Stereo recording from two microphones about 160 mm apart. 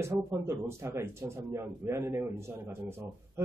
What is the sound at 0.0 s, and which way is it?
A man's voice, 20° right (ahead or behind).